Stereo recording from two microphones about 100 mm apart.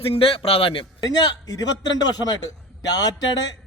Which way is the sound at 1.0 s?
40° left (ahead or behind).